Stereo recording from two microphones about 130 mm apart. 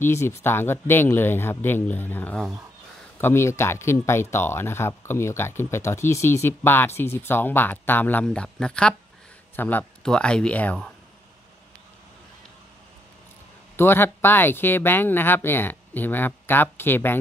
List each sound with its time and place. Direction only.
0.0 s speech: 20° left (ahead or behind)
13.7 s speech: 15° left (ahead or behind)